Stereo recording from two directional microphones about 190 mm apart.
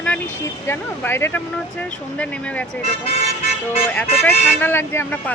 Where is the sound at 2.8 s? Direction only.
30° left (ahead or behind).